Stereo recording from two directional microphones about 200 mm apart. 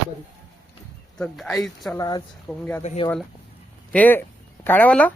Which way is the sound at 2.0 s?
20° left (ahead or behind).